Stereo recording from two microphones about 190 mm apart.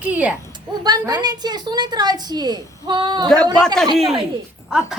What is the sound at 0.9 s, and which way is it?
A woman's voice, 20° right (ahead or behind).